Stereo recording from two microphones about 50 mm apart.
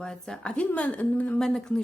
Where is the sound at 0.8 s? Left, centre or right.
Left.